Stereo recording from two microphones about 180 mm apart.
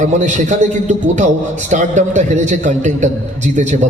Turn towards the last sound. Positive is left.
turn(degrees=-40)  # may be behind; listen again after turning